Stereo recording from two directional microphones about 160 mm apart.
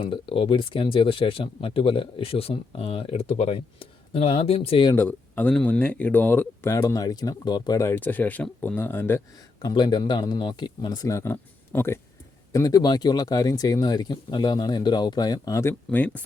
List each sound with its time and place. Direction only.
0.0 s speech: 35° left (ahead or behind)
4.9 s speech: 10° left (ahead or behind)